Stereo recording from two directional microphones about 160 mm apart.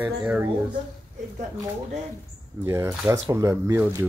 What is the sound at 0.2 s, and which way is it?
Speech, 10° right (ahead or behind).